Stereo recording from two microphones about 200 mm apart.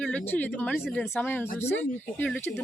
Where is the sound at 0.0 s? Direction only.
5° left (ahead or behind).